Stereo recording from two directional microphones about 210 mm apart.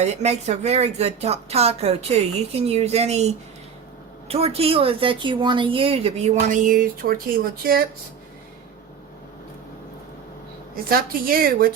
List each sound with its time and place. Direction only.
0.0 s speech: 30° right (ahead or behind)
4.3 s a woman's voice: 30° right (ahead or behind); by 7.8 s 45° right (ahead or behind)
10.8 s a woman's voice: 45° right (ahead or behind)